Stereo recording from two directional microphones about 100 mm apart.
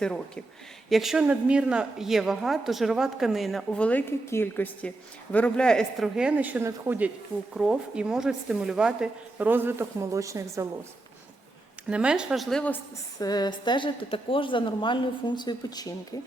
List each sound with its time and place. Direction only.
0.0 s a man's voice: 5° left (ahead or behind)
3.8 s a man's voice: 15° left (ahead or behind)
6.1 s speech: 10° right (ahead or behind)
7.5 s speech: 10° right (ahead or behind)
9.5 s a woman's voice: 20° right (ahead or behind)
11.9 s speech: 10° right (ahead or behind)
13.1 s a woman's voice: 40° left (ahead or behind)